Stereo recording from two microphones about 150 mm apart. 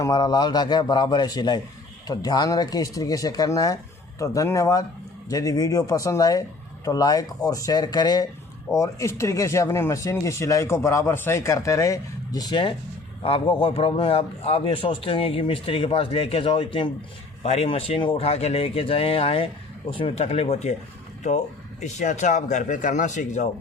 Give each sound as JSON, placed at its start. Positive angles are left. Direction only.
{"t": 0.0, "sound": "a man's voice", "side_deg": 25}